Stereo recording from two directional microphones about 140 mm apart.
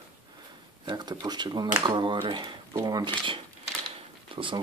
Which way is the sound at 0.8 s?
30° right (ahead or behind).